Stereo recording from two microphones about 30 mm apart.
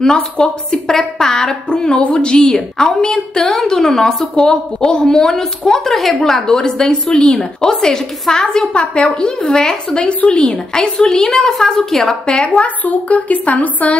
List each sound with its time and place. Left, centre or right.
0.0 s a woman's voice: left
2.4 s a woman's voice: centre
5.9 s a woman's voice: centre
6.3 s a woman's voice: left
7.1 s speech: left
7.3 s a woman's voice: centre
7.8 s a woman's voice: left
8.7 s speech: left
9.5 s a woman's voice: left
9.9 s speech: left
10.5 s a woman's voice: left
12.3 s speech: left
12.6 s a woman's voice: left